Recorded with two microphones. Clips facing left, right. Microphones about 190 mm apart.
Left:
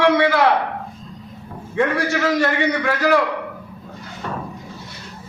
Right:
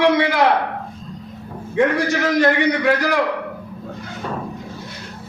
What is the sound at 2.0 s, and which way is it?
Speech, 15° right (ahead or behind).